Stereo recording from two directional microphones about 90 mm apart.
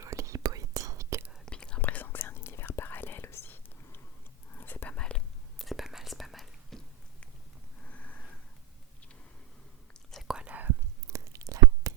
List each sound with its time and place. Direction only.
0.0 s whispering: 35° right (ahead or behind)
1.5 s whispering: 10° left (ahead or behind)
1.8 s whispering: 20° left (ahead or behind)
5.5 s whispering: centre (ahead or behind)
7.9 s a sound: 15° left (ahead or behind)
9.9 s whispering: 5° left (ahead or behind)
10.3 s whispering: 15° right (ahead or behind)
11.1 s a sound: 35° right (ahead or behind)